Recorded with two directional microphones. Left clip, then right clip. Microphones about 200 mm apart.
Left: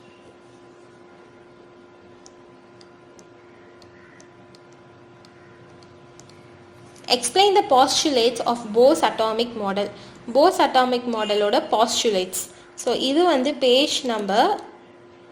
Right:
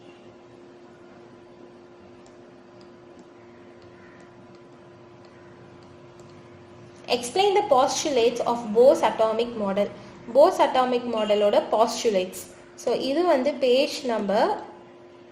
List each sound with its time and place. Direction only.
7.0 s a woman's voice: 45° left (ahead or behind)